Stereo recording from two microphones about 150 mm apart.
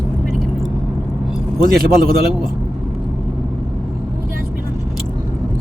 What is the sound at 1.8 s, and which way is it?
Speech, 80° right.